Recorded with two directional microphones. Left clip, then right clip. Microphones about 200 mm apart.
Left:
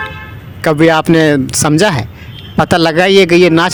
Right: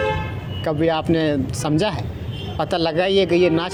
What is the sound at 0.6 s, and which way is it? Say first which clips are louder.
A man's voice: left 11 dB; 60° left (ahead or behind).